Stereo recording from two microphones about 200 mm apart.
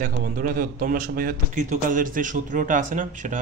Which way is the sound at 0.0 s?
40° right (ahead or behind).